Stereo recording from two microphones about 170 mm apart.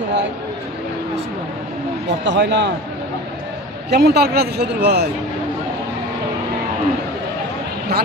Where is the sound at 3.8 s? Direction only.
75° right (ahead or behind).